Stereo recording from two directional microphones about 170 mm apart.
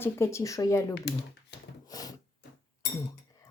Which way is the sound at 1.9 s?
20° left (ahead or behind).